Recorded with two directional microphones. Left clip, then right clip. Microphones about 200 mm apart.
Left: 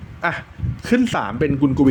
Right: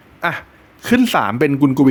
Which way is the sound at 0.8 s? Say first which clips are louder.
Right 5 dB; 15° right (ahead or behind).